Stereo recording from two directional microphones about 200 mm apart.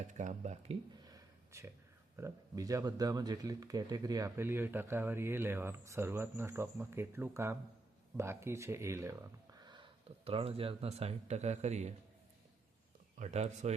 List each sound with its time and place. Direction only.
0.1 s speech: 40° right (ahead or behind)
1.0 s a sound: 15° right (ahead or behind)
2.1 s speech: 15° right (ahead or behind); by 11.9 s 35° right (ahead or behind)
13.1 s speech: 35° right (ahead or behind)